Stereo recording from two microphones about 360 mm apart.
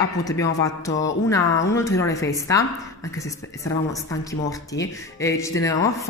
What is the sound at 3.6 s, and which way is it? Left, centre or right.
Speech, centre.